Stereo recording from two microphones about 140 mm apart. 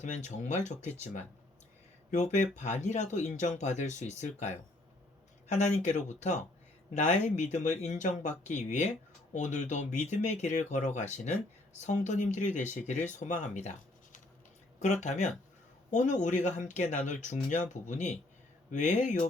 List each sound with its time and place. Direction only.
0.3 s speech: 60° left (ahead or behind)
5.5 s speech: 55° left (ahead or behind)